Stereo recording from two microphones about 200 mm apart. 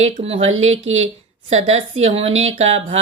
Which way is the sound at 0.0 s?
30° right (ahead or behind).